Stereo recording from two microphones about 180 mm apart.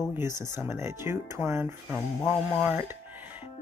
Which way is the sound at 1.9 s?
Centre (ahead or behind).